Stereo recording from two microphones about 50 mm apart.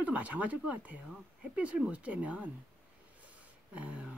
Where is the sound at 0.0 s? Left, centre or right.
Right.